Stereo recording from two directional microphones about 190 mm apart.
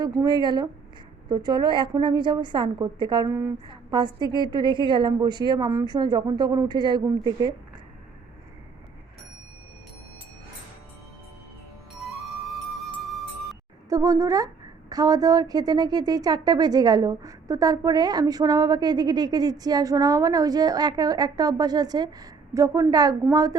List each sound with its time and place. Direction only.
0.2 s a woman's voice: 20° right (ahead or behind)
11.9 s music: centre (ahead or behind)
13.9 s a woman's voice: 20° right (ahead or behind)